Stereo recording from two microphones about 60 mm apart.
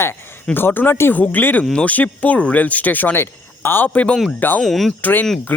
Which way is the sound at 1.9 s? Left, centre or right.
Left.